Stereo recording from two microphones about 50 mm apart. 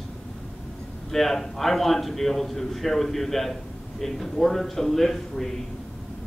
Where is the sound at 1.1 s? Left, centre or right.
Centre.